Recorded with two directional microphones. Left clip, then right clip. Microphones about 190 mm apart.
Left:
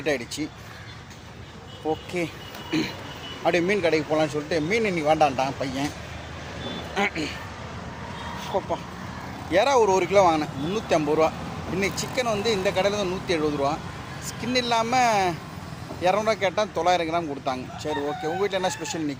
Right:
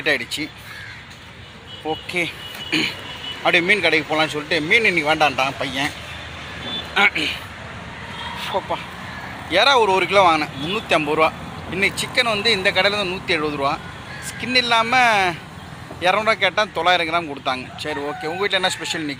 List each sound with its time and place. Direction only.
0.0 s speech: centre (ahead or behind)
2.1 s speech: 5° left (ahead or behind)
8.4 s speech: 30° right (ahead or behind)
9.5 s speech: centre (ahead or behind)